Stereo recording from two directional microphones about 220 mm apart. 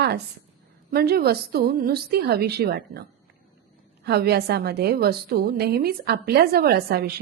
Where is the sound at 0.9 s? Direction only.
45° right (ahead or behind).